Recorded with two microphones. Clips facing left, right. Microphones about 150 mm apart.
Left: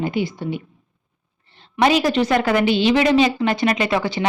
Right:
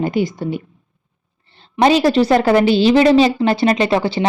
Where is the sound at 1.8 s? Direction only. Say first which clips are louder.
Right 4 dB; 30° right (ahead or behind).